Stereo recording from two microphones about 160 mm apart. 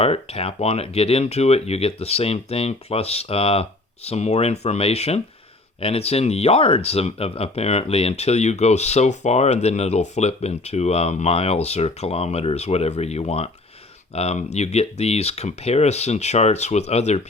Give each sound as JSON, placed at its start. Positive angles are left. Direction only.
{"t": 0.0, "sound": "speech", "side_deg": 40}